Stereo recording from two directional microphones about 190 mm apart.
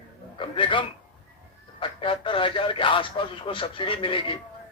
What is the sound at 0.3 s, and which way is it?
Speech, 25° left (ahead or behind).